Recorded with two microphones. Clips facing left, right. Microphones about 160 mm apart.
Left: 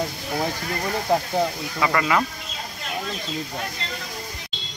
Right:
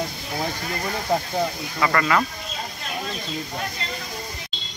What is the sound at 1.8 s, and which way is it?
Speech, 15° left (ahead or behind).